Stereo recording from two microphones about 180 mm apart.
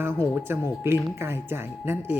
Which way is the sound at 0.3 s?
10° right (ahead or behind).